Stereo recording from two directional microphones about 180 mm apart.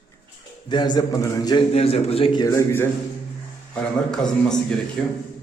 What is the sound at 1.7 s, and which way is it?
Speech, 35° left (ahead or behind).